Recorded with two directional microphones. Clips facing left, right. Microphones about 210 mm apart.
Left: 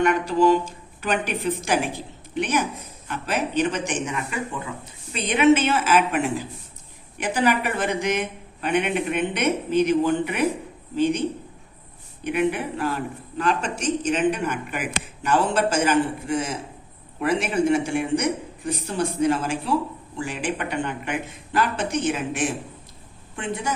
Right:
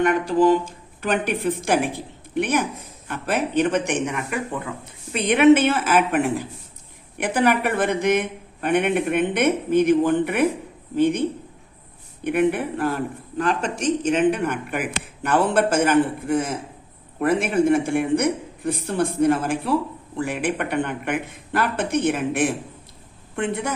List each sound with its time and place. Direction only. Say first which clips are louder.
0.0 s speech: right 1 dB; 50° right (ahead or behind)
12.2 s speech: right 3 dB; 55° right (ahead or behind)